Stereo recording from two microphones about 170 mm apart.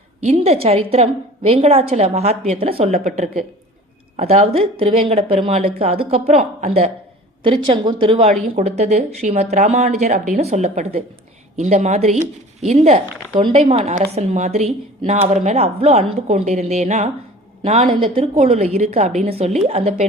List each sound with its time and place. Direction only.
0.2 s speech: 40° right (ahead or behind)